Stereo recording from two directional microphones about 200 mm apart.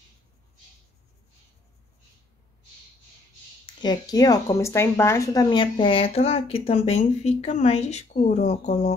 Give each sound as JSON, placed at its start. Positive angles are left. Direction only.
{"t": 3.6, "sound": "speech", "side_deg": 20}